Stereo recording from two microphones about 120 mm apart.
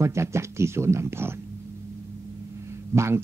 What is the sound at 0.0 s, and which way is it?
A man's voice, 25° right (ahead or behind).